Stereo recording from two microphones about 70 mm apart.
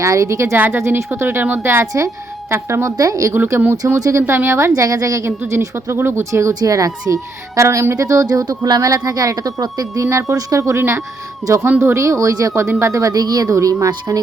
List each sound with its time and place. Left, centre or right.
0.0 s speech: right
0.5 s a woman's voice: right
3.0 s speech: right
3.3 s a woman's voice: right
3.9 s speech: right
4.3 s a woman's voice: right
4.7 s speech: right
5.5 s a woman's voice: right
6.5 s speech: right